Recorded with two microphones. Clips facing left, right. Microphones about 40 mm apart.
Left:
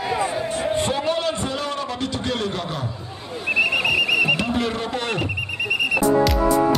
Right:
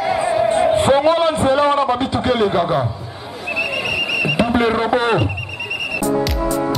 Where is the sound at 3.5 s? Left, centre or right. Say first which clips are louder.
Left 2 dB; centre.